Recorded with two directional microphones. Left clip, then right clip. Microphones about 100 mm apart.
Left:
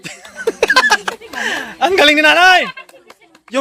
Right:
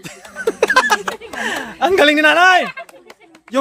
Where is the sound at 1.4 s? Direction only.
10° right (ahead or behind).